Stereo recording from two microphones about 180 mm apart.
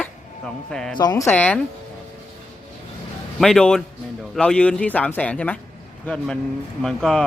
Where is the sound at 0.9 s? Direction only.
20° left (ahead or behind).